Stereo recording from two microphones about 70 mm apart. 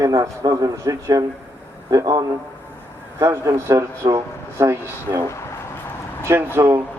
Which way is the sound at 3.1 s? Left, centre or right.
Right.